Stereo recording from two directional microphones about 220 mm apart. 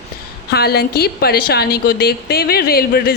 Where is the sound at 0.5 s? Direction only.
45° left (ahead or behind).